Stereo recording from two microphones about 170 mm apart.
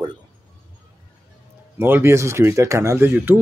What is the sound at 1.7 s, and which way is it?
Speech, 15° right (ahead or behind).